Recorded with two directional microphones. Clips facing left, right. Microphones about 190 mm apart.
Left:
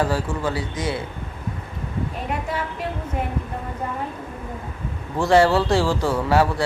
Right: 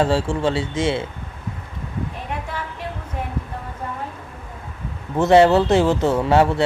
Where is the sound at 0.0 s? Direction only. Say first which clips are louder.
Right 4 dB; 25° right (ahead or behind).